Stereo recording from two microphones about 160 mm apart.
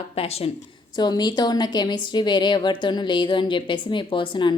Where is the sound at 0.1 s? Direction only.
40° left (ahead or behind).